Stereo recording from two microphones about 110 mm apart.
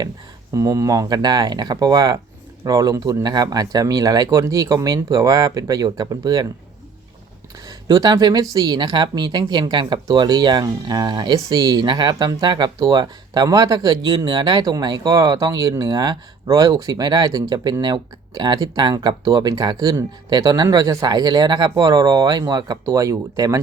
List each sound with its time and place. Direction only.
0.5 s speech: 30° right (ahead or behind)
7.7 s speech: 35° right (ahead or behind)